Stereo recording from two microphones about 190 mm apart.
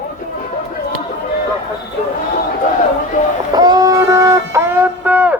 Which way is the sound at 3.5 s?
20° right (ahead or behind).